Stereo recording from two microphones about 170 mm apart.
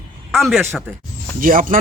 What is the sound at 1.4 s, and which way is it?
Speech, 55° right (ahead or behind).